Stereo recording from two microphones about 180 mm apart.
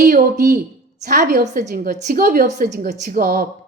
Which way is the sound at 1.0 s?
45° right (ahead or behind).